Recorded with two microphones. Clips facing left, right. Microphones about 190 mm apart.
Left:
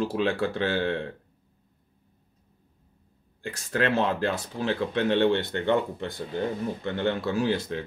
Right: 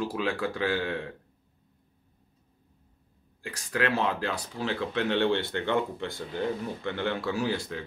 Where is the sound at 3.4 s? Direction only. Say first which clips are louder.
Left 3 dB; 25° left (ahead or behind).